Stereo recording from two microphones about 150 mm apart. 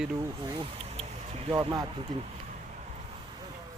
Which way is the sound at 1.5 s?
25° right (ahead or behind).